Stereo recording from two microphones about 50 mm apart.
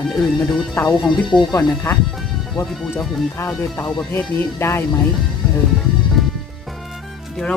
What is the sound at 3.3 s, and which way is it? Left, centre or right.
Speech, left.